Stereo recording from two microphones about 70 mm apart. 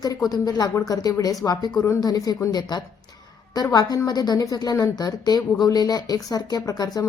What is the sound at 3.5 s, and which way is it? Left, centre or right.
Speech, left.